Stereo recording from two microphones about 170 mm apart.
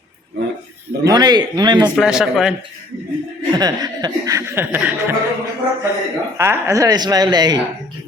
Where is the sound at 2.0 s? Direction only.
5° right (ahead or behind).